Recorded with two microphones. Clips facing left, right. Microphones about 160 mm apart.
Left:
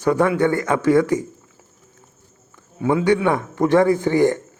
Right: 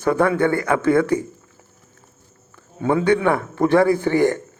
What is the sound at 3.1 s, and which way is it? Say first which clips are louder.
Speech: even; 15° left (ahead or behind).